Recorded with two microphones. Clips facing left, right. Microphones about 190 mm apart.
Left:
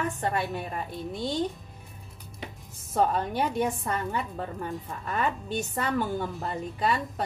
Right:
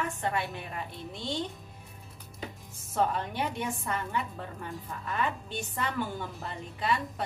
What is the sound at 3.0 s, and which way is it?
A woman's voice, 40° left (ahead or behind).